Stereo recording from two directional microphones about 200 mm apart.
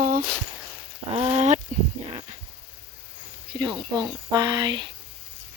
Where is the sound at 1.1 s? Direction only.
30° right (ahead or behind).